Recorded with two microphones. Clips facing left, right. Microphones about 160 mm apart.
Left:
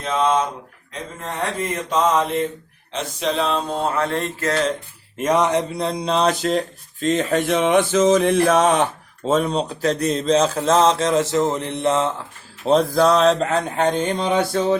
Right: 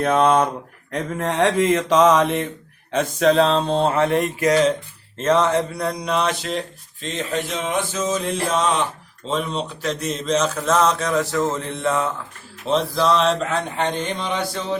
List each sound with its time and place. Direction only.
0.0 s speech: 60° right (ahead or behind)
0.9 s mantra: 70° right (ahead or behind); by 2.4 s 85° right
2.9 s mantra: 50° right (ahead or behind); by 4.7 s 10° right (ahead or behind)
5.1 s a sound: 15° left (ahead or behind)
12.6 s a sound: 40° left (ahead or behind)
14.0 s mantra: 45° left (ahead or behind)